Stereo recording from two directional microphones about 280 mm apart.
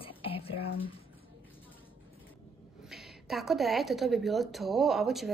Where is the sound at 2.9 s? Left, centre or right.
Centre.